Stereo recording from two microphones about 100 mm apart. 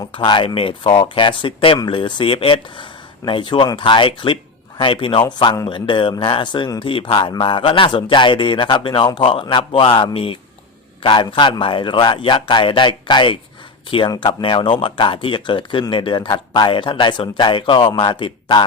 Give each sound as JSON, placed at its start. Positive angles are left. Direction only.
{"t": 0.1, "sound": "speech", "side_deg": 55}